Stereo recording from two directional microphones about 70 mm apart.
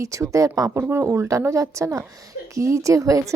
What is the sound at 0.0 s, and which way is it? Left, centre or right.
Speech, right.